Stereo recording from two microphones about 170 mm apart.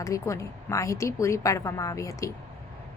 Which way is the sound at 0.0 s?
20° left (ahead or behind).